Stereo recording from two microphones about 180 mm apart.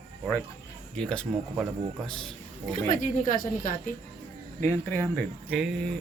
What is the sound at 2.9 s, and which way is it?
A woman's voice, 45° left (ahead or behind).